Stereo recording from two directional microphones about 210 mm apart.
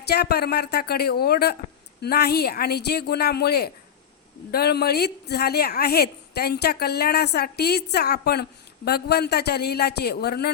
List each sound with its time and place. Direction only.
0.1 s a woman's voice: 50° left (ahead or behind)